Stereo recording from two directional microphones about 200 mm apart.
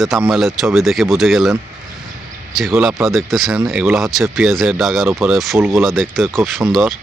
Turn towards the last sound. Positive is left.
turn(degrees=0)  # may be behind; listen again after turning